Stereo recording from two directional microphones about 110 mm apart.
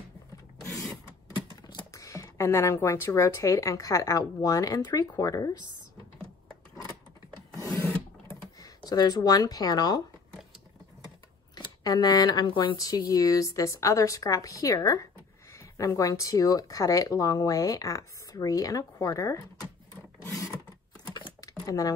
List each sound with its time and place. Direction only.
1.5 s speech: 30° left (ahead or behind)
8.3 s speech: 35° left (ahead or behind)
11.5 s speech: 40° left (ahead or behind)
12.7 s speech: 35° left (ahead or behind)
20.2 s filing: 30° left (ahead or behind)
21.0 s typing: 35° left (ahead or behind)
21.6 s speech: 30° left (ahead or behind)